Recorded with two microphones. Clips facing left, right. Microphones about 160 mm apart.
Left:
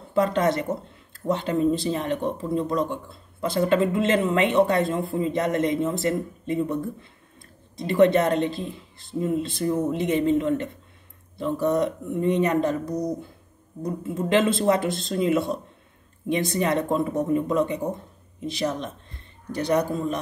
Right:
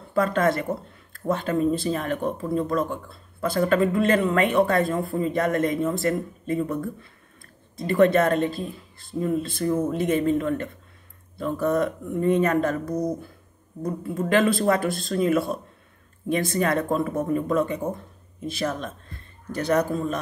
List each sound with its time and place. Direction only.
0.1 s speech: 20° left (ahead or behind)
13.8 s speech: 20° left (ahead or behind)
16.5 s speech: 20° left (ahead or behind)